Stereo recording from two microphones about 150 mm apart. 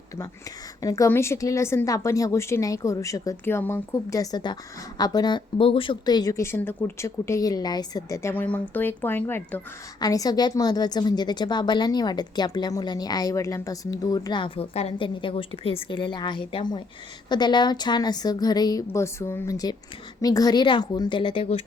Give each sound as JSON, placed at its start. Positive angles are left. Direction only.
{"t": 0.8, "sound": "a woman's voice", "side_deg": 20}
{"t": 10.0, "sound": "a woman's voice", "side_deg": 25}